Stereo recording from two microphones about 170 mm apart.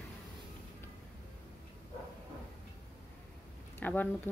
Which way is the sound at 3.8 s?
10° left (ahead or behind).